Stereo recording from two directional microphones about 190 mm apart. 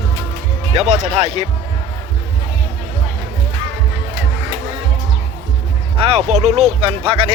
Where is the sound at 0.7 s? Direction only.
30° right (ahead or behind).